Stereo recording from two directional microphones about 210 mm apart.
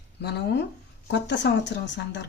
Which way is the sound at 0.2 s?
50° left (ahead or behind).